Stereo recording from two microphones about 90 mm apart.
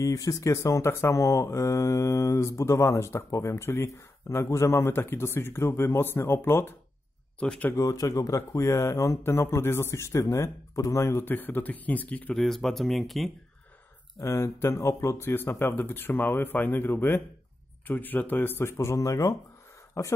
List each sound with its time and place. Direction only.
0.0 s speech: 40° left (ahead or behind)
7.3 s speech: 15° left (ahead or behind)
7.7 s speech: 40° left (ahead or behind); by 12.4 s 15° left (ahead or behind)
12.4 s speech: 5° left (ahead or behind)
14.2 s speech: 30° left (ahead or behind)